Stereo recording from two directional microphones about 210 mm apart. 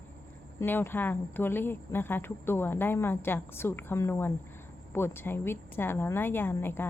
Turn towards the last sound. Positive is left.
turn(degrees=10)  # may be behind; listen again after turning